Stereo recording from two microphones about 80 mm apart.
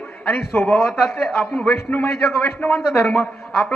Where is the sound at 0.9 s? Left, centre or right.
Centre.